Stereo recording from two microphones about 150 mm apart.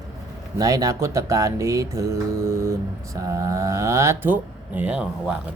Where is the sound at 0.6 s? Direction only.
25° right (ahead or behind).